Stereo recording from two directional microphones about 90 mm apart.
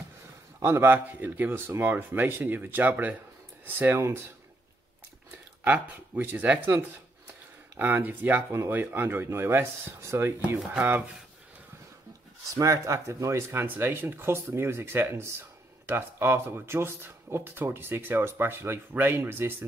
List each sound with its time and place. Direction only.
0.6 s speech: 30° right (ahead or behind)
5.6 s speech: 25° right (ahead or behind)
10.7 s speech: 15° right (ahead or behind)
12.5 s speech: 40° right (ahead or behind)